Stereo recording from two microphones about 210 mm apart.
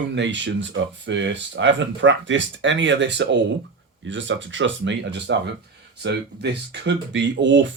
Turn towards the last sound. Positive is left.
turn(degrees=-60)  # may be behind; listen again after turning